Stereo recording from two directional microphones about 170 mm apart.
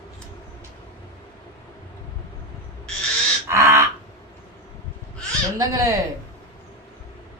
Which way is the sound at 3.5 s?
15° right (ahead or behind).